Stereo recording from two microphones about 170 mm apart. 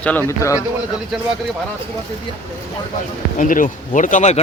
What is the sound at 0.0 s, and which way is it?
Speech, 10° left (ahead or behind).